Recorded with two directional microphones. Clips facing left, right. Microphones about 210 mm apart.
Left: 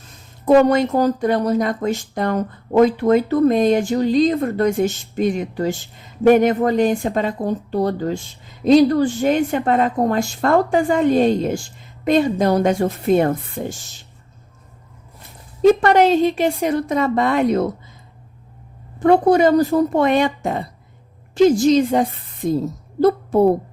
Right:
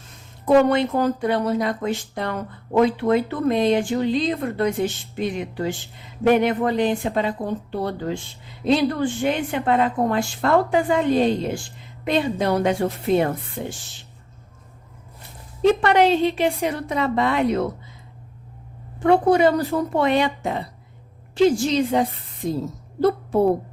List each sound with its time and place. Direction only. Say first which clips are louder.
0.4 s speech: left 3 dB; 45° left (ahead or behind)
15.6 s speech: left 4 dB; 45° left (ahead or behind)
18.9 s speech: left 3 dB; 40° left (ahead or behind)
23.0 s a sound: left 4 dB; 40° left (ahead or behind)